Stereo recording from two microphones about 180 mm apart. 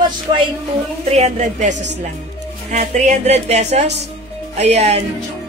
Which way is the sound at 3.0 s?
40° right (ahead or behind).